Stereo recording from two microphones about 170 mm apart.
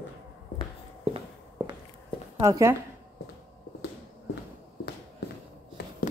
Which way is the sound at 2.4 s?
15° right (ahead or behind).